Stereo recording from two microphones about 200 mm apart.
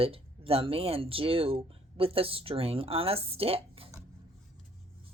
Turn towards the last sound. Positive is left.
turn(degrees=-30)  # may be behind; listen again after turning